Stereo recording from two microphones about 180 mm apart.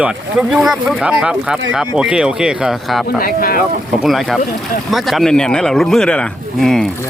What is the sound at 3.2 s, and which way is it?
Speech, 55° left (ahead or behind).